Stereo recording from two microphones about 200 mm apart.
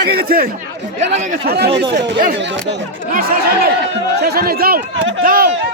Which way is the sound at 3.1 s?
45° right (ahead or behind).